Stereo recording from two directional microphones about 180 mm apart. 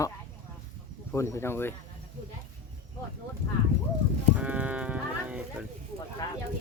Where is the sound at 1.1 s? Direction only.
15° left (ahead or behind).